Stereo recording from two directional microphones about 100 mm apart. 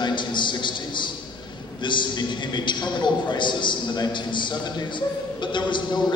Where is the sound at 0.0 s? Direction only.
50° left (ahead or behind).